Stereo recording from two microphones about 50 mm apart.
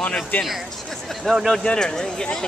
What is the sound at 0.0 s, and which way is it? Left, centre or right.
Speech, left.